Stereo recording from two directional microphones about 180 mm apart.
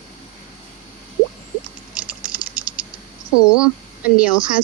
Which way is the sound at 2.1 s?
10° right (ahead or behind).